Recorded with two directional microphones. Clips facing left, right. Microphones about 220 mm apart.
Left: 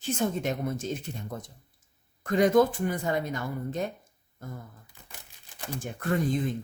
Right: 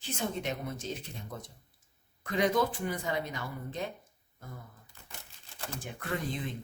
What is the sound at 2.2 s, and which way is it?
Speech, 45° left (ahead or behind).